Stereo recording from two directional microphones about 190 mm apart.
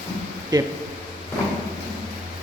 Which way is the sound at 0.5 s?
20° right (ahead or behind).